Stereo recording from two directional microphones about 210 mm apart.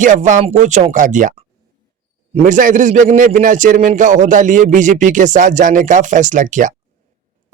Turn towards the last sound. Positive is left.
turn(degrees=-35)  # may be behind; listen again after turning